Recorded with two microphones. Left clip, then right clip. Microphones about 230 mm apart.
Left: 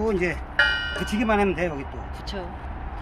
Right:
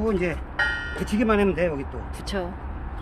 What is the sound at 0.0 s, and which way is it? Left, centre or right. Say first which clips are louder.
Speech: left 1 dB; centre.